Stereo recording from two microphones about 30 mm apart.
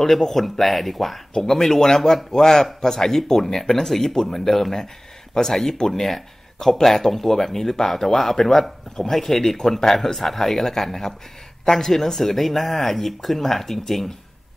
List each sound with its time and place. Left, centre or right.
0.0 s speech: centre